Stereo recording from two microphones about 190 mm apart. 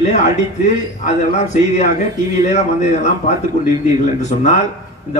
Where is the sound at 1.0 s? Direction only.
40° left (ahead or behind).